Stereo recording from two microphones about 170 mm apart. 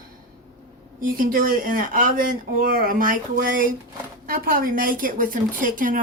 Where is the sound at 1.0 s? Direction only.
55° right (ahead or behind).